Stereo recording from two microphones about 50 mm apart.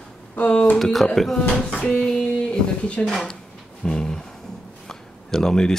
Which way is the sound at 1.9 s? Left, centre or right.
Centre.